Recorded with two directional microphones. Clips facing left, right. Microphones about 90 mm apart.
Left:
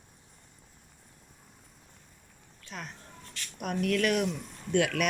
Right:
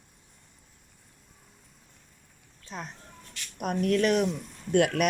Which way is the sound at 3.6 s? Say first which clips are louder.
Right 3 dB; 40° right (ahead or behind).